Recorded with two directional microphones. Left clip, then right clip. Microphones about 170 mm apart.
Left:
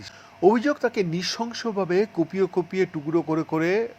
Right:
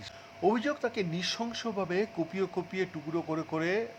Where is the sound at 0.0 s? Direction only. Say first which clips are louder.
Left 9 dB; 25° left (ahead or behind).